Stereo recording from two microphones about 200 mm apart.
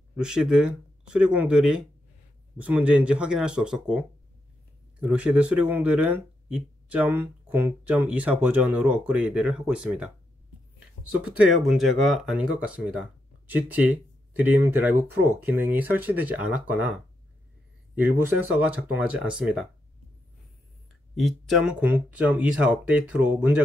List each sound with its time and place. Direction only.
0.1 s speech: 5° right (ahead or behind)
5.0 s speech: 5° right (ahead or behind)
11.1 s speech: 5° right (ahead or behind)
17.9 s speech: 10° right (ahead or behind)
21.1 s speech: centre (ahead or behind)